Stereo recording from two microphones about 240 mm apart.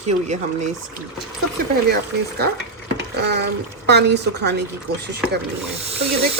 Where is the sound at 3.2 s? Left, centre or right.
Right.